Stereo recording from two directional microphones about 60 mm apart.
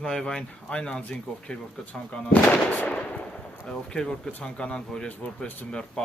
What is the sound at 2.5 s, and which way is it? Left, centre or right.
Speech, left.